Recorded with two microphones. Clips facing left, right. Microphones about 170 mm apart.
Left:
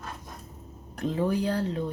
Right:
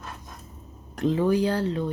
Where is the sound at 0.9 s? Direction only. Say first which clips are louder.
Right 5 dB; 90° right.